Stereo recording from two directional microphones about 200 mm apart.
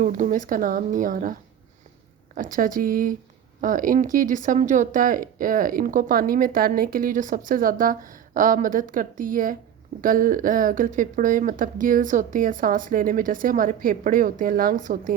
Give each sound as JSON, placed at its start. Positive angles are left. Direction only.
{"t": 0.0, "sound": "speech", "side_deg": -40}